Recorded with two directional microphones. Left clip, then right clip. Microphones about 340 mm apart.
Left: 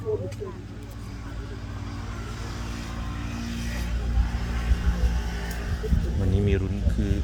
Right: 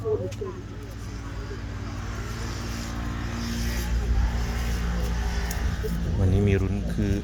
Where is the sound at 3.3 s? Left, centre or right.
Right.